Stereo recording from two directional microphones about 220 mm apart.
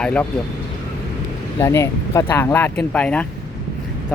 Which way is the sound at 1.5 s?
10° left (ahead or behind).